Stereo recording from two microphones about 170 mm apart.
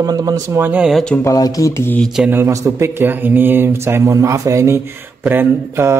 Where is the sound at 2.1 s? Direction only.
10° right (ahead or behind).